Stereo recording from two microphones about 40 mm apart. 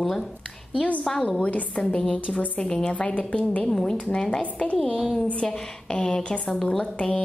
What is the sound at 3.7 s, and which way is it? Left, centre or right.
Speech, centre.